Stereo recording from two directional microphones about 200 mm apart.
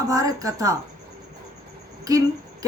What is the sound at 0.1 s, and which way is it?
Speech, 15° right (ahead or behind).